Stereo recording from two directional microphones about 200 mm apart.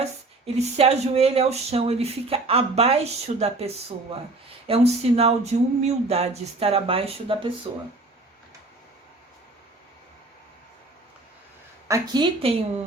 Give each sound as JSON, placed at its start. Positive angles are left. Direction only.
{"t": 0.0, "sound": "speech", "side_deg": -30}
{"t": 4.7, "sound": "speech", "side_deg": -30}
{"t": 11.9, "sound": "speech", "side_deg": -25}